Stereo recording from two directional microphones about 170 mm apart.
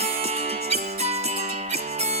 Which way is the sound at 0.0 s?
40° right (ahead or behind).